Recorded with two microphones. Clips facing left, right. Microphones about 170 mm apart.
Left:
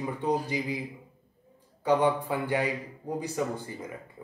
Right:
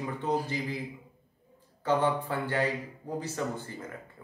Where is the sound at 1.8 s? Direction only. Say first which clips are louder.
Left 3 dB; 15° left (ahead or behind).